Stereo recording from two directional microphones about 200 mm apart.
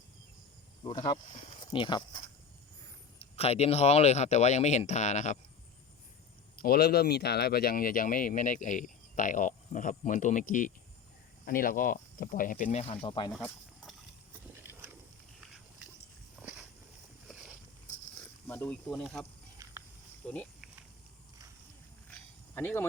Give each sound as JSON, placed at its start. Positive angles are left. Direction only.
{"t": 0.9, "sound": "speech", "side_deg": 25}
{"t": 3.2, "sound": "speech", "side_deg": 30}
{"t": 6.6, "sound": "speech", "side_deg": 50}
{"t": 14.5, "sound": "a sound", "side_deg": -10}
{"t": 16.3, "sound": "walk", "side_deg": -5}
{"t": 18.4, "sound": "speech", "side_deg": 10}
{"t": 20.2, "sound": "speech", "side_deg": 5}
{"t": 22.1, "sound": "a sound", "side_deg": 10}